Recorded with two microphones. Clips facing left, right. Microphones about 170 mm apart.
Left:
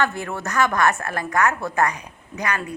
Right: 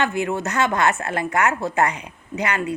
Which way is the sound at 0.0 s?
20° right (ahead or behind).